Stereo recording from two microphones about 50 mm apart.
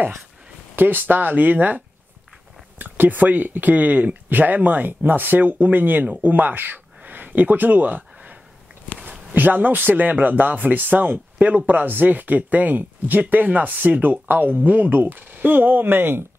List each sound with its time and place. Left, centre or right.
0.7 s speech: right
2.8 s speech: right